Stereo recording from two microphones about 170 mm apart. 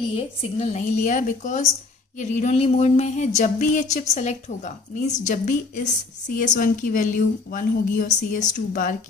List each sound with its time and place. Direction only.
0.1 s a woman's voice: 35° left (ahead or behind)